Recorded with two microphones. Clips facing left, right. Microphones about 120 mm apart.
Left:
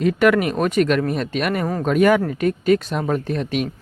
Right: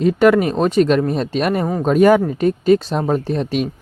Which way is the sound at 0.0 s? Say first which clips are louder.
Right 3 dB; 30° right (ahead or behind).